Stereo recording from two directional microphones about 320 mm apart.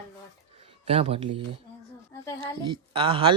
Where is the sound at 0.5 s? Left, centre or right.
Centre.